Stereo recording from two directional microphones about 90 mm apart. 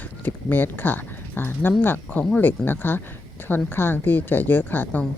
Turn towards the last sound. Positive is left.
turn(degrees=20)  # may be behind; listen again after turning